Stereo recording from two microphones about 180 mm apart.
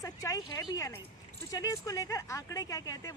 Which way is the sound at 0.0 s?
20° left (ahead or behind).